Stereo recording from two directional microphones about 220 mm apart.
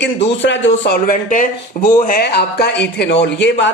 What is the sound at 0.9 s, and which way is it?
Speech, 40° left (ahead or behind).